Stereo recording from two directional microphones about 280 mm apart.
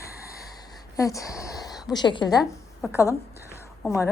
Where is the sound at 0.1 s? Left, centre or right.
Left.